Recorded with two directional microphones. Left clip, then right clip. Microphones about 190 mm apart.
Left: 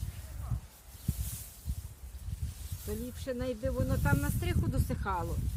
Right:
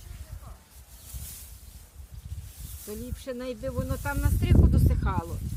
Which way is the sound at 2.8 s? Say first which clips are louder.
Right 1 dB; 30° right (ahead or behind).